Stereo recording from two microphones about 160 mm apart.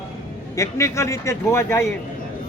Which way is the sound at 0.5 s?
20° left (ahead or behind).